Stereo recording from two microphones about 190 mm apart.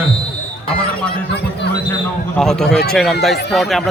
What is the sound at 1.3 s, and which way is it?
Chatter, 60° left (ahead or behind).